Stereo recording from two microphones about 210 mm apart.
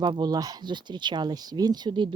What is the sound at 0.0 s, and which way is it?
Speech, 20° right (ahead or behind).